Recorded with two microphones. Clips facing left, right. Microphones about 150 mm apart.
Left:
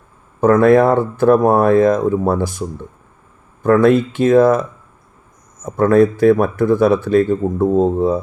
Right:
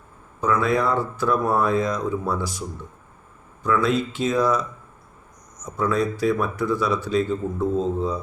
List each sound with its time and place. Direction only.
0.4 s speech: 55° left (ahead or behind)